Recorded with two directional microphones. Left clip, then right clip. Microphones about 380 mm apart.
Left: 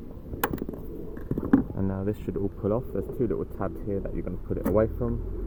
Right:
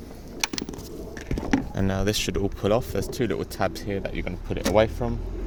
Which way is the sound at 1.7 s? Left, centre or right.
Right.